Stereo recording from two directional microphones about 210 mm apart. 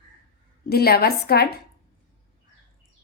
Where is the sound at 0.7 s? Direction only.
45° left (ahead or behind).